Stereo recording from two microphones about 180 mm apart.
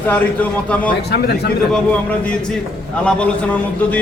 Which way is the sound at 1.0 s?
60° left (ahead or behind).